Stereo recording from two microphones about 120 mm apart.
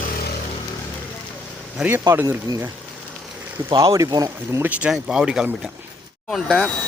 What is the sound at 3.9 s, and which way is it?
Speech, 30° right (ahead or behind).